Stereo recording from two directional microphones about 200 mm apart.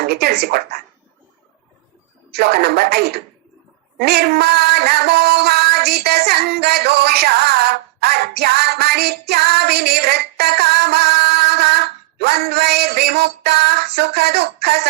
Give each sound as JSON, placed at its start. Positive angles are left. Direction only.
{"t": 0.0, "sound": "speech", "side_deg": -55}
{"t": 2.3, "sound": "speech", "side_deg": -55}
{"t": 3.9, "sound": "a sound", "side_deg": -55}